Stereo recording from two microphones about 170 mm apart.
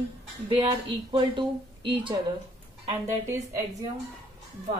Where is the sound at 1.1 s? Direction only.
30° right (ahead or behind).